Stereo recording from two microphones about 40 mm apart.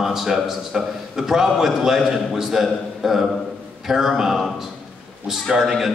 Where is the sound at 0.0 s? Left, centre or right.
Centre.